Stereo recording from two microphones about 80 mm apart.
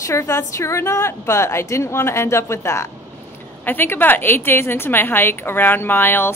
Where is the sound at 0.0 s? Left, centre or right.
Left.